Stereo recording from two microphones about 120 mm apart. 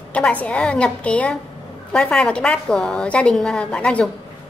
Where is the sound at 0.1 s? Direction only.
10° left (ahead or behind).